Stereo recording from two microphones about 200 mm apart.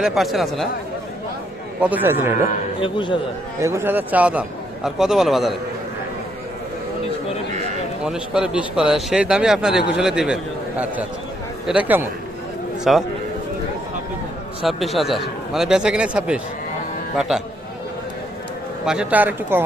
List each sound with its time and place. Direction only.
0.0 s a man's voice: centre (ahead or behind)
1.8 s a man's voice: 10° right (ahead or behind)
2.8 s a man's voice: 25° left (ahead or behind)
3.6 s a man's voice: 10° right (ahead or behind)
8.0 s a man's voice: 5° right (ahead or behind)
14.6 s a man's voice: centre (ahead or behind)
18.9 s a man's voice: 5° right (ahead or behind)